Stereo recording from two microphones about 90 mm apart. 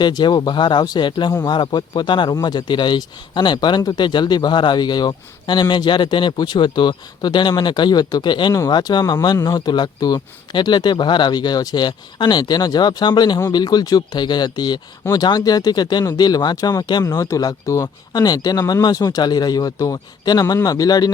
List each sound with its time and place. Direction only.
0.0 s speech: 55° left (ahead or behind)
2.3 s speech: 50° left (ahead or behind)
17.0 s speech: 40° left (ahead or behind)